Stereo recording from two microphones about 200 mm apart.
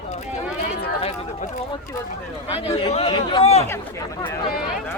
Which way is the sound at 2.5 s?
25° left (ahead or behind).